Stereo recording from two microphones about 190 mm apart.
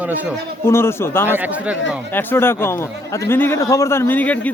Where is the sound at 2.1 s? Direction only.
10° left (ahead or behind).